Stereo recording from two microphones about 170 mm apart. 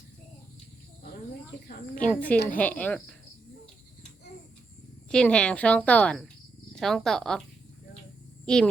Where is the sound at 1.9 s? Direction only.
10° left (ahead or behind).